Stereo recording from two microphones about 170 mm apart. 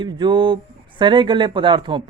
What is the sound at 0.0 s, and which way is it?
A man's voice, 25° right (ahead or behind).